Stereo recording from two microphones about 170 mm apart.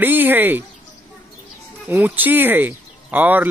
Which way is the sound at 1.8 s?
10° right (ahead or behind).